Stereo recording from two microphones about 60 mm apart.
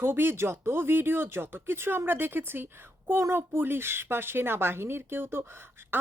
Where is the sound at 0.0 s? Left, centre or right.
Right.